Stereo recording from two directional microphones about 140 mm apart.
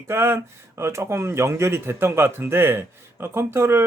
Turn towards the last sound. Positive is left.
turn(degrees=-20)  # may be behind; listen again after turning